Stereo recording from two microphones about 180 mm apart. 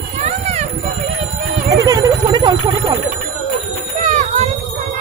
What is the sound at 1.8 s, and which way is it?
Telephone bell ringing, 20° right (ahead or behind).